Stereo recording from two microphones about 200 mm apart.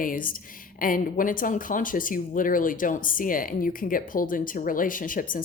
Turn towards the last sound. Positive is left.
turn(degrees=45)  # may be behind; listen again after turning